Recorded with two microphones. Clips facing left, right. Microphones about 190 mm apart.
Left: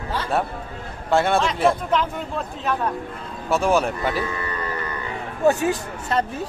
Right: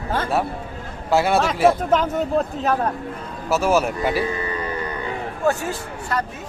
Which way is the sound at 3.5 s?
5° right (ahead or behind).